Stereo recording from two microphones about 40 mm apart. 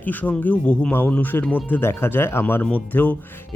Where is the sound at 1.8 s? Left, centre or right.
Left.